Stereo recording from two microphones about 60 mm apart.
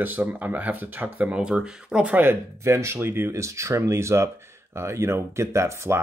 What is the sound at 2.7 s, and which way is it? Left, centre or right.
Speech, right.